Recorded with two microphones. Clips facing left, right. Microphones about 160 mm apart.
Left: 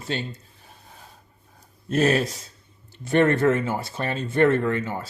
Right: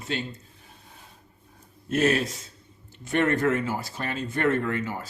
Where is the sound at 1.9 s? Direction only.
35° left (ahead or behind).